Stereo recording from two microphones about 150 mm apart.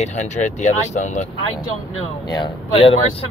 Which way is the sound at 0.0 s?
50° left (ahead or behind).